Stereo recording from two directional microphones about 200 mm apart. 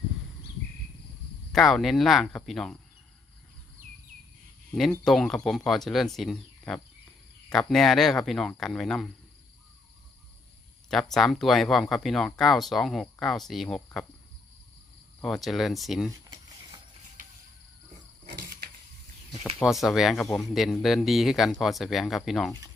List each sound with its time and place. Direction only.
1.5 s speech: centre (ahead or behind)
5.0 s speech: centre (ahead or behind)
10.8 s speech: centre (ahead or behind)
15.2 s speech: centre (ahead or behind)
18.3 s a sound: 50° right (ahead or behind)
19.6 s speech: centre (ahead or behind)